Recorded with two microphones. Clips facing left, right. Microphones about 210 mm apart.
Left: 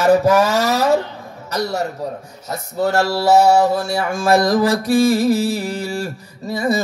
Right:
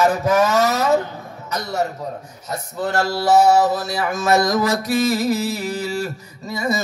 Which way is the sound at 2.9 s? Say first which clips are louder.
Left 1 dB; 30° left (ahead or behind).